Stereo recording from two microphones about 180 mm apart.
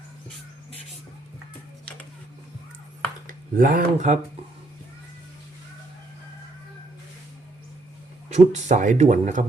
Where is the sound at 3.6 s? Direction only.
50° right (ahead or behind).